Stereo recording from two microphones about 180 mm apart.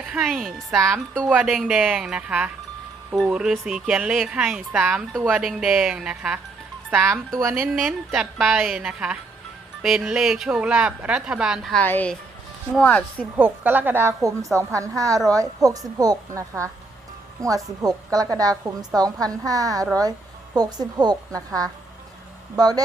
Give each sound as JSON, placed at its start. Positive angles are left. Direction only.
{"t": 0.0, "sound": "speech", "side_deg": -5}
{"t": 7.7, "sound": "speech", "side_deg": 0}
{"t": 13.3, "sound": "a woman's voice", "side_deg": -10}